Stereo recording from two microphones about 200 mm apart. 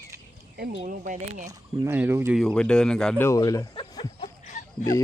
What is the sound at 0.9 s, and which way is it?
Speech, 40° right (ahead or behind).